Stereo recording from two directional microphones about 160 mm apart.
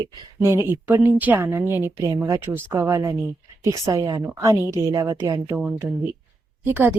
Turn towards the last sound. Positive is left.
turn(degrees=-10)  # may be behind; listen again after turning